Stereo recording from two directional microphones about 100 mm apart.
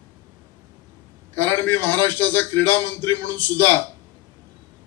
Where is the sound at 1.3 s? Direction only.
20° left (ahead or behind).